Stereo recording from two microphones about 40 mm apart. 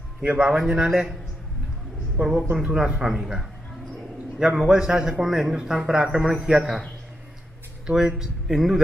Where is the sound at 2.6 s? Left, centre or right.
Right.